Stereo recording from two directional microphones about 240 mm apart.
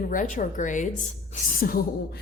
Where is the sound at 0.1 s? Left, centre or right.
Left.